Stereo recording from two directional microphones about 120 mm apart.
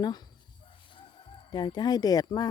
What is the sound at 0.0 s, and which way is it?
Speech, 35° left (ahead or behind).